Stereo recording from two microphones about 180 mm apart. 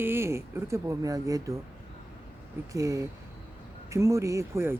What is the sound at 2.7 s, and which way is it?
Speech, 15° right (ahead or behind).